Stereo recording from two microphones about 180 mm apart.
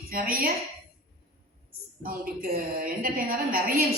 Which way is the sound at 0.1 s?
55° right (ahead or behind).